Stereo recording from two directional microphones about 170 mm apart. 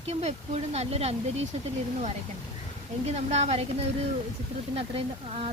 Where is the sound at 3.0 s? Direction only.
40° right (ahead or behind).